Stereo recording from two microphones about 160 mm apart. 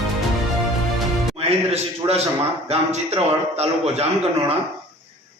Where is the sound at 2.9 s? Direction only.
40° right (ahead or behind).